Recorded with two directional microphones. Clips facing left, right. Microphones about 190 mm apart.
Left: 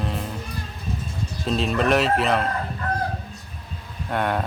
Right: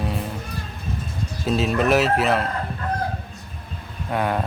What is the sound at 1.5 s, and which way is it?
Speech, 5° right (ahead or behind).